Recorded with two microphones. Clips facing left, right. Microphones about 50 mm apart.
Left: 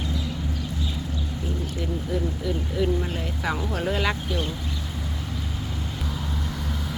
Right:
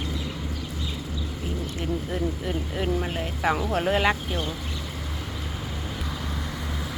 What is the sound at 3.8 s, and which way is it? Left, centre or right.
Speech, right.